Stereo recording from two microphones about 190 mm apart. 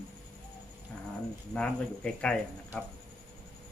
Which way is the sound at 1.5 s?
5° left (ahead or behind).